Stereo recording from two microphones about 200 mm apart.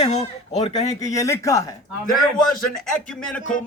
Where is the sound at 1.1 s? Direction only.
15° left (ahead or behind).